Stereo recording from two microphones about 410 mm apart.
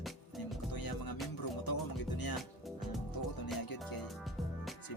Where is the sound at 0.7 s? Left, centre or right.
Left.